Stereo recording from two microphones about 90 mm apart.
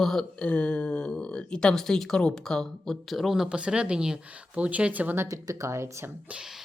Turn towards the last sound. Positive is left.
turn(degrees=-30)  # may be behind; listen again after turning